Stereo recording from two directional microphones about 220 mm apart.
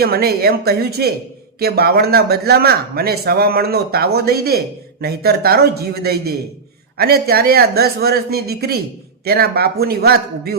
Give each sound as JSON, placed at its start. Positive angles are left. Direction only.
{"t": 0.0, "sound": "speech", "side_deg": -45}